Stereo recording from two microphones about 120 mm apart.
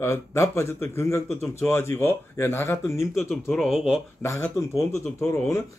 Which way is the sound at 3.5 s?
Centre (ahead or behind).